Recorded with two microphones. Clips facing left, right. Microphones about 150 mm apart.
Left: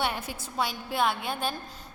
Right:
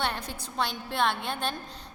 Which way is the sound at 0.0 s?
5° left (ahead or behind).